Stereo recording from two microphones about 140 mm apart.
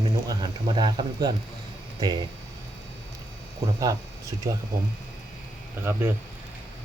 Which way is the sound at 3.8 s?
25° right (ahead or behind).